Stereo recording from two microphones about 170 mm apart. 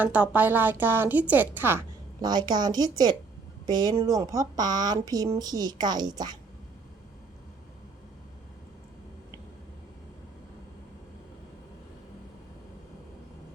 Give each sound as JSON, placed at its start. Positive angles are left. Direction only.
{"t": 0.0, "sound": "a woman's voice", "side_deg": -10}
{"t": 2.2, "sound": "speech", "side_deg": -25}